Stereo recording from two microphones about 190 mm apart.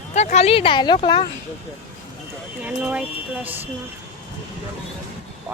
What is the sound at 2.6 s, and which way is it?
Speech, 5° right (ahead or behind).